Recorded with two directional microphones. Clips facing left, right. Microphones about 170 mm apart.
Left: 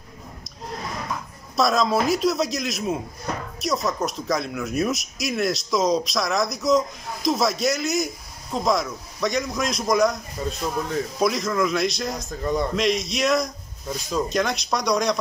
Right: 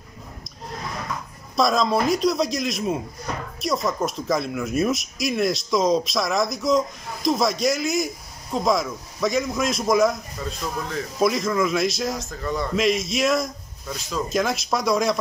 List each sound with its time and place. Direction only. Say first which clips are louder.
1.6 s speech: even; centre (ahead or behind)
10.4 s a man's voice: left 6 dB; 25° left (ahead or behind)
11.1 s speech: right 2 dB; centre (ahead or behind)
12.3 s a man's voice: left 3 dB; 20° left (ahead or behind)
12.7 s speech: right 1 dB; centre (ahead or behind)